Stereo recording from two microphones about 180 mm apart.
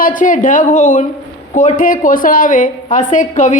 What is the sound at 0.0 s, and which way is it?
A woman's voice, 45° left (ahead or behind).